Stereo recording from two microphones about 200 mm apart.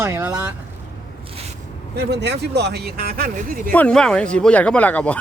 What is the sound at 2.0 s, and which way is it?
Speech, 55° right (ahead or behind).